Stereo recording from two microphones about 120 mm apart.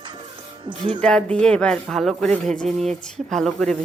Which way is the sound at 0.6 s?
40° right (ahead or behind).